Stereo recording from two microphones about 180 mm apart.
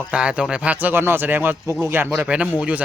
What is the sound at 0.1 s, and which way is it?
Speech, 5° right (ahead or behind).